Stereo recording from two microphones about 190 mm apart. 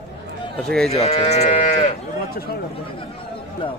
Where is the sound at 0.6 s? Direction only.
5° left (ahead or behind).